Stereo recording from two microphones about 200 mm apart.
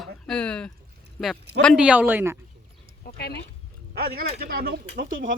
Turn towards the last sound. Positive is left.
turn(degrees=-45)  # may be behind; listen again after turning